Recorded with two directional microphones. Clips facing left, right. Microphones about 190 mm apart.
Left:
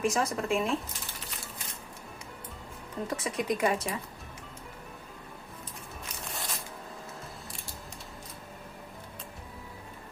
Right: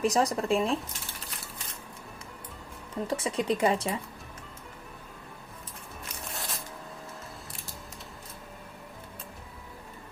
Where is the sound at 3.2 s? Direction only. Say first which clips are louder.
Right 2 dB; 30° right (ahead or behind).